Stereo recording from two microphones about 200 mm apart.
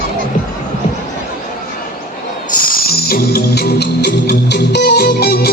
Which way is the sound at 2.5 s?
45° left (ahead or behind).